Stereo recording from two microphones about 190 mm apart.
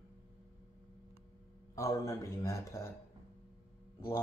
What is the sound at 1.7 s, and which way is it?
A man's voice, 15° left (ahead or behind).